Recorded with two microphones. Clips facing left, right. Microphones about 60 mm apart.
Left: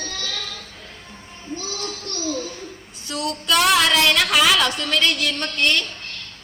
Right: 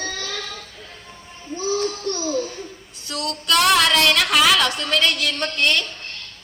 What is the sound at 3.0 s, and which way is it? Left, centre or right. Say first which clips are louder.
A woman's voice: even; centre.